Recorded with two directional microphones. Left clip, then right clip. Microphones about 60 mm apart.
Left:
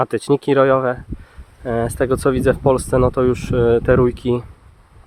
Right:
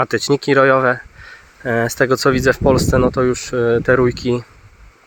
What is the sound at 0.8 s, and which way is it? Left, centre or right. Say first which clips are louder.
Speech: right 4 dB; centre.